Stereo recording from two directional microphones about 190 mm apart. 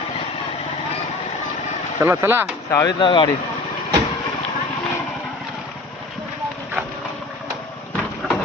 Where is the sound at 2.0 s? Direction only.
15° right (ahead or behind).